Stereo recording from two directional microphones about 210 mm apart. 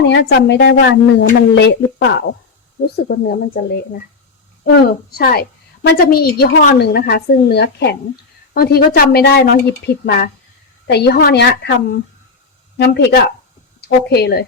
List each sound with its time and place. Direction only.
0.0 s a woman's voice: 55° left (ahead or behind)
4.6 s a woman's voice: 45° left (ahead or behind)